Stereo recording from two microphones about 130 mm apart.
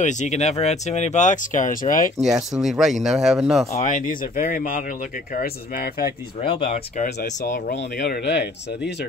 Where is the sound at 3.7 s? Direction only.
70° left (ahead or behind); by 5.8 s 90° left.